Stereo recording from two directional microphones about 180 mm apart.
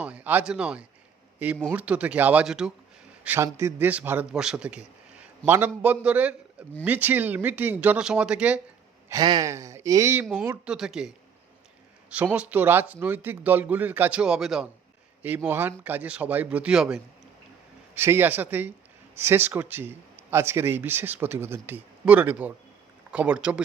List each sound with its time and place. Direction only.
0.0 s a man's voice: 5° right (ahead or behind)
9.0 s a man's voice: 20° right (ahead or behind)
10.8 s speech: 5° right (ahead or behind)
12.1 s a man's voice: 10° right (ahead or behind)